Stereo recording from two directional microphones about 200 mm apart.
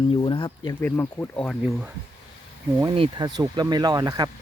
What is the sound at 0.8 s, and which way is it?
Speech, 10° left (ahead or behind).